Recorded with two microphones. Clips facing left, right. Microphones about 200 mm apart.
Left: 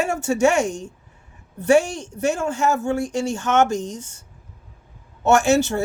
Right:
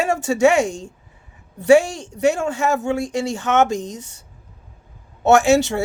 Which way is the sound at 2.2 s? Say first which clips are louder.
Right 2 dB; 65° right (ahead or behind).